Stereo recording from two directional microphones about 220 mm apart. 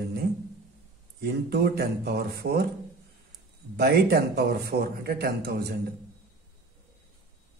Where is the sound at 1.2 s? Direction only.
45° right (ahead or behind).